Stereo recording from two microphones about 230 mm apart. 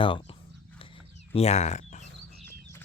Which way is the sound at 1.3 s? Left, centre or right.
Left.